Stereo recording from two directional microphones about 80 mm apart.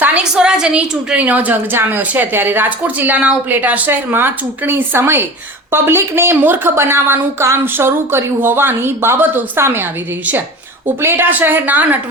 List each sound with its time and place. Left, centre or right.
0.0 s a sound: centre
0.3 s a woman's voice: centre; by 9.8 s right
11.0 s a woman's voice: right